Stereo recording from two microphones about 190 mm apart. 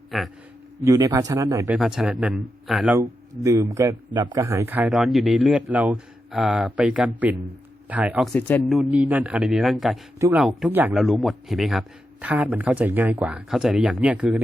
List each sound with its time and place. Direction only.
0.1 s a man's voice: centre (ahead or behind)
0.8 s a man's voice: 15° right (ahead or behind)
1.8 s a man's voice: 5° right (ahead or behind)
3.0 s a man's voice: 15° right (ahead or behind)